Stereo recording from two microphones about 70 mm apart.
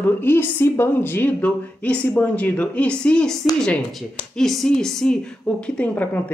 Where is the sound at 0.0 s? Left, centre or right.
Left; by 3.3 s centre.